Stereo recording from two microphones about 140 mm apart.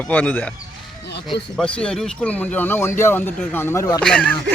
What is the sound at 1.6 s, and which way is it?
Speech, 10° left (ahead or behind).